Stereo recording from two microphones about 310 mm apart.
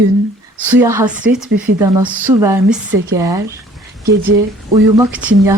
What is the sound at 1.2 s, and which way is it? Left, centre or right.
Speech, right.